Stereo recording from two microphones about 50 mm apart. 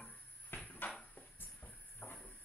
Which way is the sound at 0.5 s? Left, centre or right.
Left.